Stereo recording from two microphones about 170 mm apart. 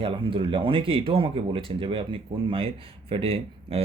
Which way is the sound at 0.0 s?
30° right (ahead or behind).